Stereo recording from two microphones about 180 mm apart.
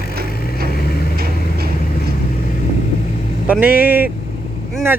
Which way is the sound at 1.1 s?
60° right (ahead or behind).